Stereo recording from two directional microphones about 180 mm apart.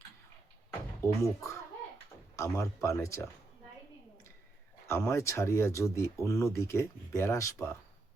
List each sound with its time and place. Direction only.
1.0 s speech: 15° left (ahead or behind)
4.9 s speech: 15° left (ahead or behind)